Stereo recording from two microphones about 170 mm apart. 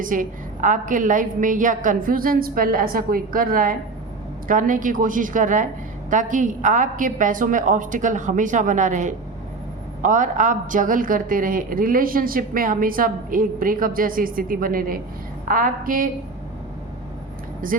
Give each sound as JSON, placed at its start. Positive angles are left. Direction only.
{"t": 0.0, "sound": "a woman's voice", "side_deg": -50}
{"t": 17.6, "sound": "a woman's voice", "side_deg": -55}